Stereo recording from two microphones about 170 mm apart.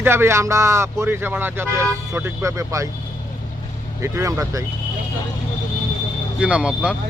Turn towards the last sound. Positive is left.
turn(degrees=-5)  # may be behind; listen again after turning